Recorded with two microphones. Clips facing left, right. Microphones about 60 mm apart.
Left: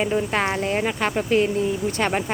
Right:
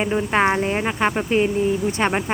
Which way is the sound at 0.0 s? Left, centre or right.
Centre.